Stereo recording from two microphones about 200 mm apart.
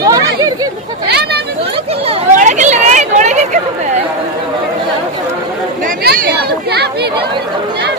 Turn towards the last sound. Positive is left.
turn(degrees=-55)  # may be behind; listen again after turning